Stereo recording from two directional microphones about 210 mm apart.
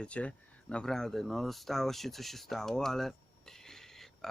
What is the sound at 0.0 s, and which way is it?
Speech, 5° left (ahead or behind).